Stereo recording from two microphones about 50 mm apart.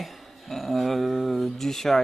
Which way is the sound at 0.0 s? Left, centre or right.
Centre.